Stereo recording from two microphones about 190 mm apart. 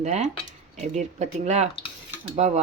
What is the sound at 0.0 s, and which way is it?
Speech, 35° right (ahead or behind).